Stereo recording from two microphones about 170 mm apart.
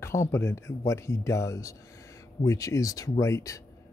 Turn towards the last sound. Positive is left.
turn(degrees=20)  # may be behind; listen again after turning